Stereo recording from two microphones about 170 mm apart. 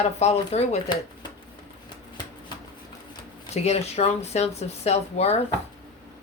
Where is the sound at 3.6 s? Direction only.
40° left (ahead or behind).